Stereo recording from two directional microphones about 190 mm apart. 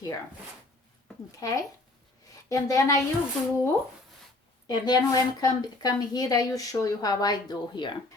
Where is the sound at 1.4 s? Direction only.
20° left (ahead or behind).